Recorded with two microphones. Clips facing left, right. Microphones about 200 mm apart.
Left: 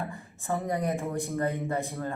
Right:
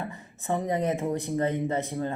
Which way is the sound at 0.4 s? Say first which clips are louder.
Right 3 dB; 20° right (ahead or behind).